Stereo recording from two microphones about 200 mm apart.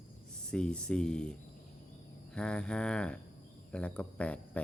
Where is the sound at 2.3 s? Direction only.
5° left (ahead or behind).